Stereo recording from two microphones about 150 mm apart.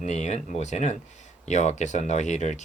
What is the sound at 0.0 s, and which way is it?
Speech, 50° left (ahead or behind).